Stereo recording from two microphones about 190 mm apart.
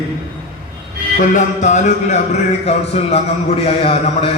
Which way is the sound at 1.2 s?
40° left (ahead or behind).